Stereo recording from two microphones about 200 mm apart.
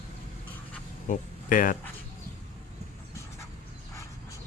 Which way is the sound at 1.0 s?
40° left (ahead or behind).